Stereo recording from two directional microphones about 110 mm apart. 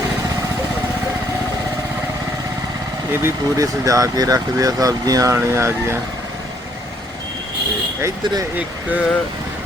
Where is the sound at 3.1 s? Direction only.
20° right (ahead or behind).